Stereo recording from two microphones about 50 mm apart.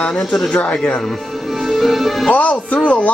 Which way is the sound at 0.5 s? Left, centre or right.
Left.